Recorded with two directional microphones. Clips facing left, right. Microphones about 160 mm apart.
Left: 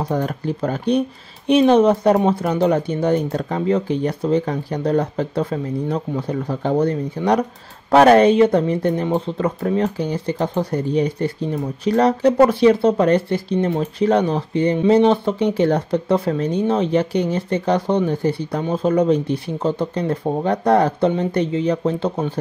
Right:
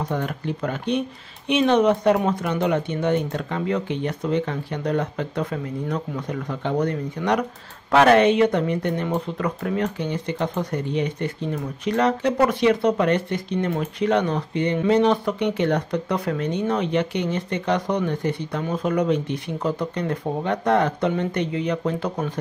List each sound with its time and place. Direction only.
0.1 s speech: 35° left (ahead or behind)